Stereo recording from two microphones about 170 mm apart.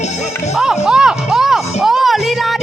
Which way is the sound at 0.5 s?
5° right (ahead or behind).